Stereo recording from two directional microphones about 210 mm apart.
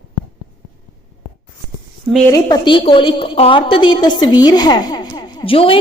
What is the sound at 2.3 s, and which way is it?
A woman's voice, 20° left (ahead or behind).